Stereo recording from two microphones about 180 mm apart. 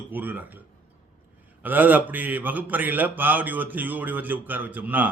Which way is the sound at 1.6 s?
10° right (ahead or behind).